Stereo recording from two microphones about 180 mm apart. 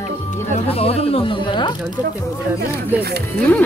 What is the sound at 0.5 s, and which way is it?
Speech, 35° left (ahead or behind).